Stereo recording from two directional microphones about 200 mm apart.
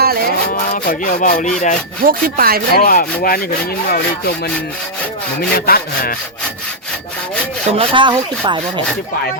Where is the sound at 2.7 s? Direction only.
45° left (ahead or behind).